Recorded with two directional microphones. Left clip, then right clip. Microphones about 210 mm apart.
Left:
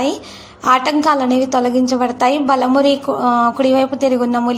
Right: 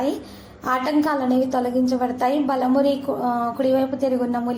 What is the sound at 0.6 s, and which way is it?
A woman's voice, 20° left (ahead or behind).